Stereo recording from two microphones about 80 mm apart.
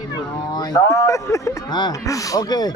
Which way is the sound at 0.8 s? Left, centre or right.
Left.